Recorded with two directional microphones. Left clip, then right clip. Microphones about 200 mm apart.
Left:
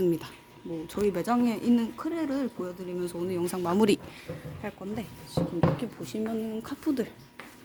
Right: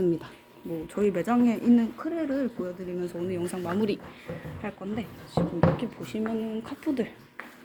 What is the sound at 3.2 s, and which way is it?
Speech, 25° left (ahead or behind).